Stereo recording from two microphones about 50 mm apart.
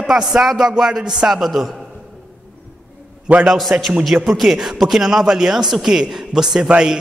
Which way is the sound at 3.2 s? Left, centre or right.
Right.